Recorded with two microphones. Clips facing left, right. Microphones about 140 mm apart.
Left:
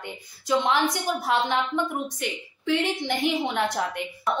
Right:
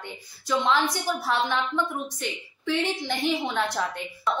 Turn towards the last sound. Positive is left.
turn(degrees=20)  # may be behind; listen again after turning